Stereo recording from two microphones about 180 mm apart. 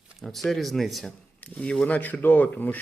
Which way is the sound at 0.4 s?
Centre (ahead or behind).